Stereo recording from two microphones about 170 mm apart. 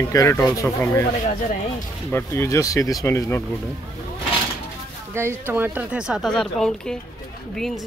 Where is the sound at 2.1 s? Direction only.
15° left (ahead or behind).